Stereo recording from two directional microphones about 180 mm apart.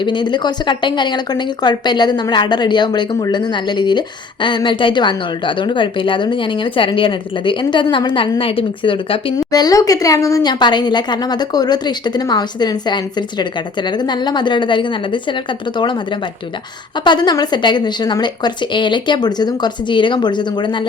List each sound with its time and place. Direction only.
0.0 s speech: 25° left (ahead or behind)
17.0 s speech: 25° left (ahead or behind)